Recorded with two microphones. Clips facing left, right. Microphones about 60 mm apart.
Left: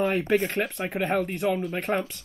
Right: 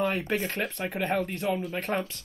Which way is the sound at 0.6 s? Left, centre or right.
Centre.